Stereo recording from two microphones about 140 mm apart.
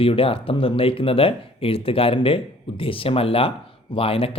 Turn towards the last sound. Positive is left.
turn(degrees=40)  # may be behind; listen again after turning